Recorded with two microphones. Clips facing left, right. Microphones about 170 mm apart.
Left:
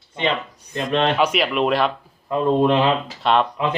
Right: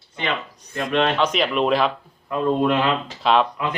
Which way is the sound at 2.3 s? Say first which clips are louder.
Left 2 dB; 25° left (ahead or behind).